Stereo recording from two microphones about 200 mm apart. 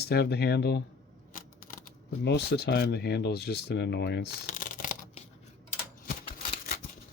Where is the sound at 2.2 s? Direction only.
55° left (ahead or behind).